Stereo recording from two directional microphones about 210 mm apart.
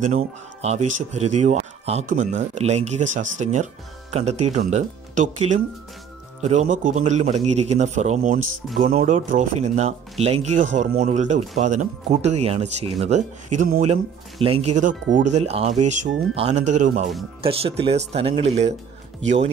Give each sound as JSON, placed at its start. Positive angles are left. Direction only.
{"t": 0.0, "sound": "speech", "side_deg": -30}